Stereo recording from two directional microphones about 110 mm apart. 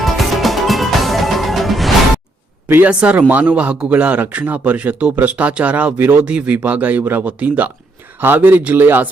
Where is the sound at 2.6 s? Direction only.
20° right (ahead or behind).